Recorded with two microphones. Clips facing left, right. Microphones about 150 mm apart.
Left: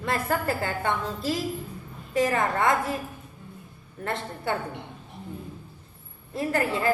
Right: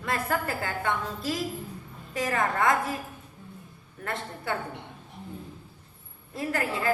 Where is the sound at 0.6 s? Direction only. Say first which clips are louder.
Left 2 dB; 30° left (ahead or behind).